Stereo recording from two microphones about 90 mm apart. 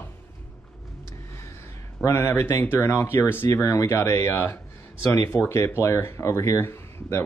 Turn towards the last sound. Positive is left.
turn(degrees=30)  # may be behind; listen again after turning